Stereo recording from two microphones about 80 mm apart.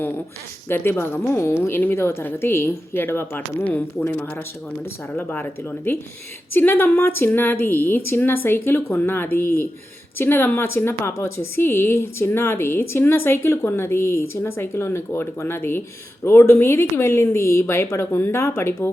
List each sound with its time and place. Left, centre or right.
0.7 s a woman's voice: left